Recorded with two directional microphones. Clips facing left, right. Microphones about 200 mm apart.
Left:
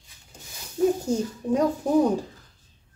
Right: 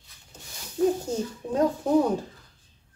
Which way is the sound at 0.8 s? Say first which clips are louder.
Left 1 dB; 15° left (ahead or behind).